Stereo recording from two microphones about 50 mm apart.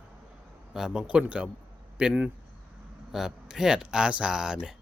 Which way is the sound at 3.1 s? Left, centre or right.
Centre.